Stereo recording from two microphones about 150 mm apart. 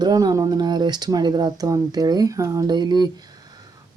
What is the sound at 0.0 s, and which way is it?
Speech, 25° right (ahead or behind).